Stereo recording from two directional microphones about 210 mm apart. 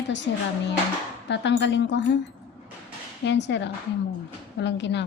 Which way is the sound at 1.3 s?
60° left (ahead or behind).